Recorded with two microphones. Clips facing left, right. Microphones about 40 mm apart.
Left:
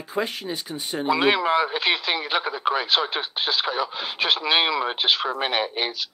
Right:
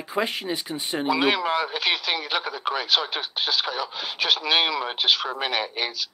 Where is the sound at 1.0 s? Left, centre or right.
Centre.